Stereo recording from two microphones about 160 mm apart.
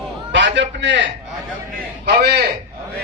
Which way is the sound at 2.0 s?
85° right.